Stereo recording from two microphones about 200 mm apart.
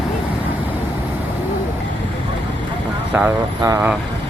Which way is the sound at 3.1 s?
10° right (ahead or behind).